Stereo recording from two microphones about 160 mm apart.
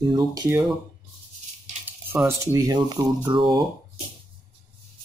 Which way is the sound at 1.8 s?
15° right (ahead or behind).